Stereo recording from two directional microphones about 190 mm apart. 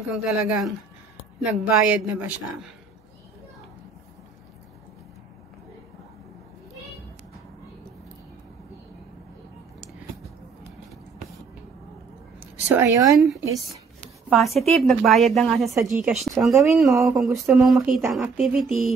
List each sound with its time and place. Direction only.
0.1 s speech: centre (ahead or behind)
12.6 s a woman's voice: 10° right (ahead or behind)
14.3 s speech: centre (ahead or behind)
15.7 s a woman's voice: 15° right (ahead or behind)
16.1 s speech: centre (ahead or behind)